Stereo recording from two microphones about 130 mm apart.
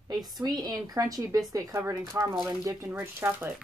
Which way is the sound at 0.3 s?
30° right (ahead or behind).